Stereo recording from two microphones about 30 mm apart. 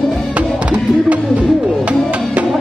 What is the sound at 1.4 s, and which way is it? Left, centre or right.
Music, right.